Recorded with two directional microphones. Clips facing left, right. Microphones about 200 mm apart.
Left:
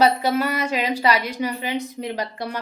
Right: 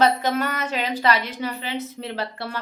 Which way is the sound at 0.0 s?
10° left (ahead or behind).